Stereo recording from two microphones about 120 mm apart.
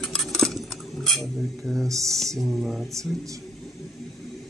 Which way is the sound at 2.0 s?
5° left (ahead or behind).